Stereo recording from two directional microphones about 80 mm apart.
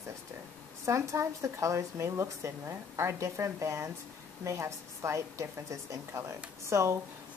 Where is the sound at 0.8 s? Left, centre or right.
Right.